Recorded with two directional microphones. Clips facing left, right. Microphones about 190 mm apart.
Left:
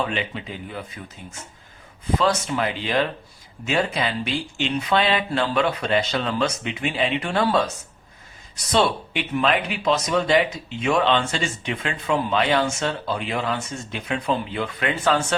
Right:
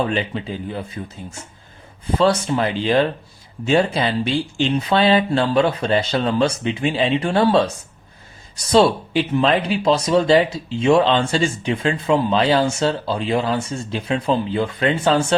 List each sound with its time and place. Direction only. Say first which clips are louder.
0.0 s speech: right 5 dB; 35° right (ahead or behind)